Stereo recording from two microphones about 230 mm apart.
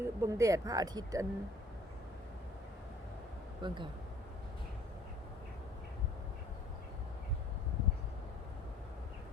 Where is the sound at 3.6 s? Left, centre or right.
Right.